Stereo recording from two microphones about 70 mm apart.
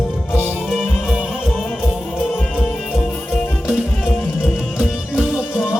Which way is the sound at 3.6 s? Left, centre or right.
Centre.